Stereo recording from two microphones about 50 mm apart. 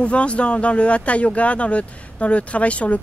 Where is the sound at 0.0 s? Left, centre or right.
Left.